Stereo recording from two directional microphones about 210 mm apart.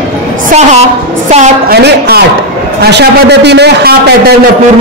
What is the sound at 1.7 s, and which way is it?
A man's voice, 50° right (ahead or behind).